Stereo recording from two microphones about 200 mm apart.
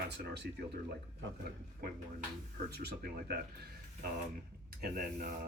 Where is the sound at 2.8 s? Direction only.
55° right (ahead or behind).